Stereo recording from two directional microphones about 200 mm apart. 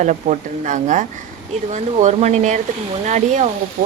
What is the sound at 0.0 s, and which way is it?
A woman's voice, 35° right (ahead or behind).